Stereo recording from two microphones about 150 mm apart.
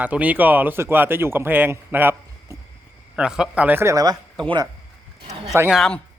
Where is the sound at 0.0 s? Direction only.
10° right (ahead or behind); by 4.7 s 30° right (ahead or behind).